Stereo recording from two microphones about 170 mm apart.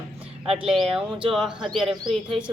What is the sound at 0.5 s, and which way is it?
Speech, centre (ahead or behind).